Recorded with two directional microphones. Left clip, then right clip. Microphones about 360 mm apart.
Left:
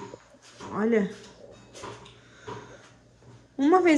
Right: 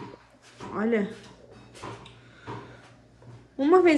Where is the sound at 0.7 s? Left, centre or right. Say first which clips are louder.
Left 2 dB; centre.